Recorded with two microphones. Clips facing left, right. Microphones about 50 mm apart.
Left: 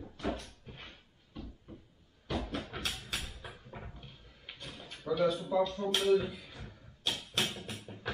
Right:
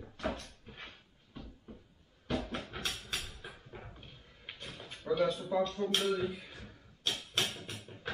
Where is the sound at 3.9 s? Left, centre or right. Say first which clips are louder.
Left 1 dB; centre.